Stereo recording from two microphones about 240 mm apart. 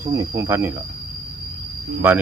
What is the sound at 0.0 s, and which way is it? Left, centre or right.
Speech, centre.